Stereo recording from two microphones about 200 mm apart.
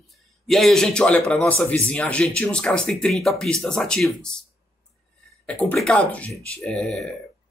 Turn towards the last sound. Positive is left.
turn(degrees=5)  # may be behind; listen again after turning